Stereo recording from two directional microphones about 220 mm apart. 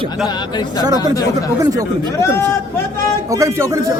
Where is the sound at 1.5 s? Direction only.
15° right (ahead or behind).